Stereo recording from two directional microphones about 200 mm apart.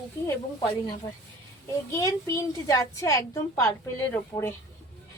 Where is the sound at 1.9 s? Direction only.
15° left (ahead or behind).